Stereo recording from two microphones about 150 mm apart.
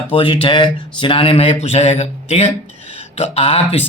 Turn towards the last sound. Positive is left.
turn(degrees=45)  # may be behind; listen again after turning